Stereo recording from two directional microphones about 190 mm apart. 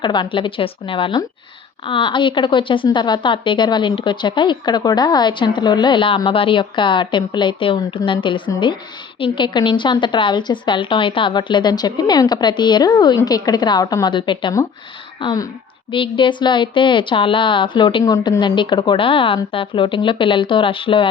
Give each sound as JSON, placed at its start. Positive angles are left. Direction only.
{"t": 0.0, "sound": "a woman's voice", "side_deg": 25}